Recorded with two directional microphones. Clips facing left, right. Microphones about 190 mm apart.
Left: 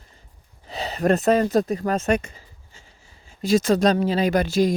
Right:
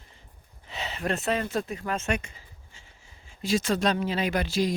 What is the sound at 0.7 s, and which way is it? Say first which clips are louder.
Speech: left 9 dB; 35° left (ahead or behind).